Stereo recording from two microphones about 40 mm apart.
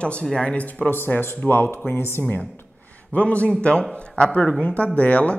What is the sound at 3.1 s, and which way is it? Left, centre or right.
Speech, left.